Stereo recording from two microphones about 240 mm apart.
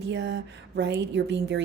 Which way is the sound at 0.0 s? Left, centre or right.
Right.